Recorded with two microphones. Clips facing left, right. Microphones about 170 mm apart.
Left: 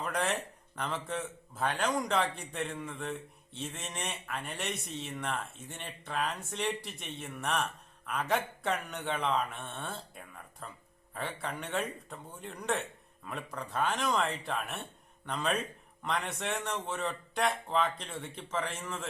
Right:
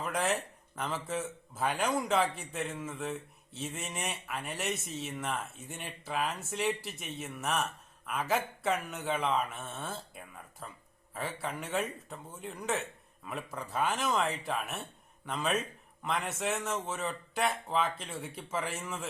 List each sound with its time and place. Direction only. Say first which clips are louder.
0.0 s a man's voice: right 1 dB; centre (ahead or behind)